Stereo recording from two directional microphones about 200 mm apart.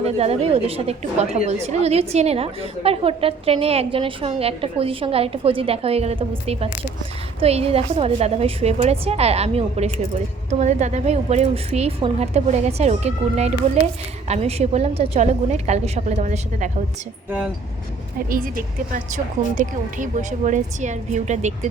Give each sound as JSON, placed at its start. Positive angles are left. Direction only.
{"t": 0.0, "sound": "a woman's voice", "side_deg": -30}
{"t": 18.3, "sound": "speech", "side_deg": -45}